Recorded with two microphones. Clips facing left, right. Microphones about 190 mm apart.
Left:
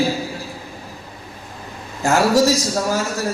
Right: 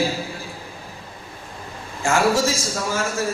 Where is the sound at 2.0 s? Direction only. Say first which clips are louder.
Left 4 dB; 40° left (ahead or behind).